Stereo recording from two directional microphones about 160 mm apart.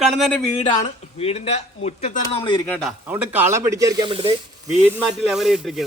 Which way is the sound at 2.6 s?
10° left (ahead or behind).